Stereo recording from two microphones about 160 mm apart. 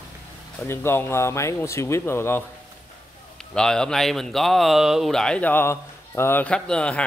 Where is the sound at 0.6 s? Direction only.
15° left (ahead or behind).